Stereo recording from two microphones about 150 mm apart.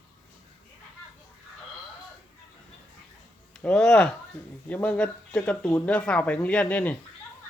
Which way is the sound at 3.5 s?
5° left (ahead or behind).